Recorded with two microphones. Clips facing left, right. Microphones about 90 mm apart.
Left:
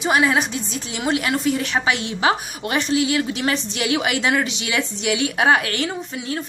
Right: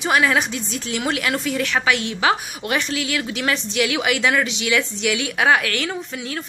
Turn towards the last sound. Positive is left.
turn(degrees=30)  # may be behind; listen again after turning